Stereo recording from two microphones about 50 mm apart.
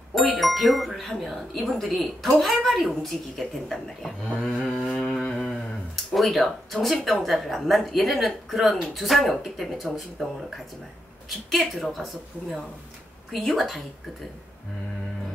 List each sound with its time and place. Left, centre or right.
0.1 s speech: centre
4.8 s a sound: centre
6.1 s speech: centre
11.2 s a woman's voice: centre